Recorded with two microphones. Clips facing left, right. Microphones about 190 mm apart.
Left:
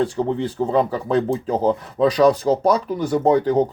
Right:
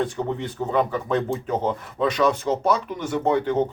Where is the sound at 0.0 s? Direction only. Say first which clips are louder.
Left 5 dB; 30° left (ahead or behind).